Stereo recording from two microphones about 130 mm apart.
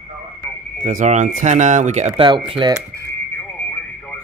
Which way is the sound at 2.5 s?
40° right (ahead or behind).